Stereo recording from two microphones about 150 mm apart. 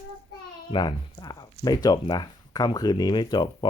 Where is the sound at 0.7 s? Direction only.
30° left (ahead or behind).